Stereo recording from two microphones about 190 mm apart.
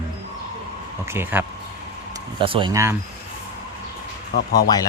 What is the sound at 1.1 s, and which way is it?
Speech, 10° right (ahead or behind).